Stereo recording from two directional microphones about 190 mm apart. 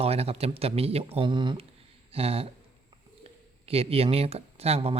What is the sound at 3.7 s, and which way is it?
A man's voice, 30° right (ahead or behind).